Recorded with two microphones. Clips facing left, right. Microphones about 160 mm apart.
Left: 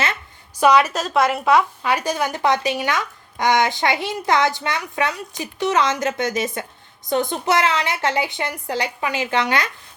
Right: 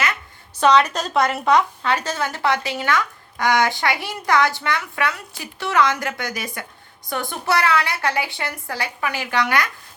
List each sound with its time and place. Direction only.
0.6 s a woman's voice: 10° left (ahead or behind)